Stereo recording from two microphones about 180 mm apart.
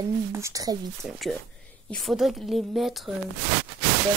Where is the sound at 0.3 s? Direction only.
15° right (ahead or behind).